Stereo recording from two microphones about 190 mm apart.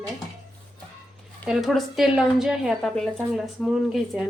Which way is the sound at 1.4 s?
Centre (ahead or behind).